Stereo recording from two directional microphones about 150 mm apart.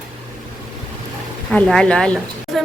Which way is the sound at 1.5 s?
5° left (ahead or behind).